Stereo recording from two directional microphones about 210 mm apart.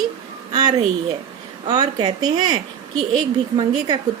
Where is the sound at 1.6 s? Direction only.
20° right (ahead or behind).